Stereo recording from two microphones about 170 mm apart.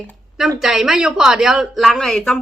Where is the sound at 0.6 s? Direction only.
Centre (ahead or behind).